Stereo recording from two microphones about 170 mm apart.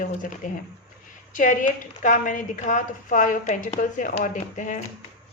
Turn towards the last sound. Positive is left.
turn(degrees=50)  # may be behind; listen again after turning